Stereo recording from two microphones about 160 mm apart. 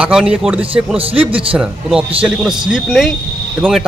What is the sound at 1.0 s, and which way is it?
Speech, 35° right (ahead or behind).